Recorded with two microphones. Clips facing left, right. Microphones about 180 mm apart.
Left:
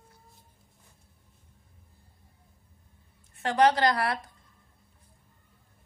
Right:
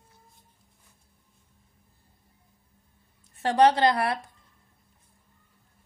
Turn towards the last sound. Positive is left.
turn(degrees=-25)  # may be behind; listen again after turning